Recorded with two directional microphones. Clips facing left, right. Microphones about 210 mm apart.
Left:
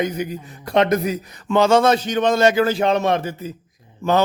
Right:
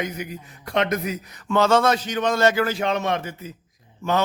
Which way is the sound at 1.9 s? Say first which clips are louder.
Left 4 dB; 25° left (ahead or behind).